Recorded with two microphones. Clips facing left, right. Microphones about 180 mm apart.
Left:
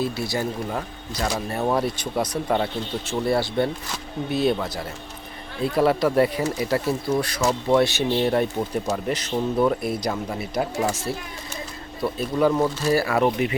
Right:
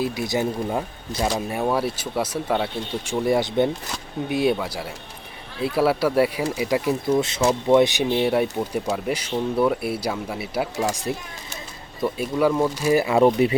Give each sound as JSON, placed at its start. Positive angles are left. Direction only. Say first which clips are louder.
{"t": 0.0, "sound": "speech", "louder": "right 2 dB", "side_deg": -15}
{"t": 5.7, "sound": "speech", "louder": "even", "side_deg": -5}